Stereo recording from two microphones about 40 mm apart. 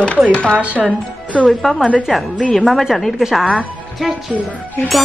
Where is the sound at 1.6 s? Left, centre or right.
Centre.